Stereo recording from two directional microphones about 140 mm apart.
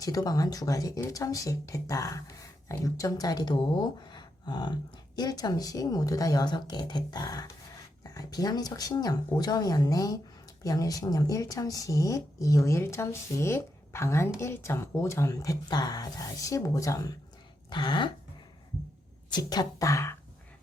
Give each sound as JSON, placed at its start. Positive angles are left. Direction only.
{"t": 0.0, "sound": "speech", "side_deg": 25}
{"t": 17.7, "sound": "a sound", "side_deg": 35}
{"t": 19.3, "sound": "speech", "side_deg": 30}